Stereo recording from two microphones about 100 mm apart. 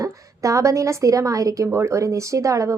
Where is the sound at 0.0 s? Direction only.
30° right (ahead or behind).